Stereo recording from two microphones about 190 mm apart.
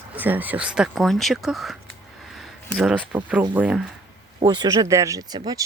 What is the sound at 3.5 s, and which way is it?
Speech, 5° right (ahead or behind).